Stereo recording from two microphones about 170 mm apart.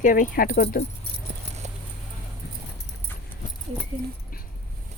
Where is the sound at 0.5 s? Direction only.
75° left (ahead or behind).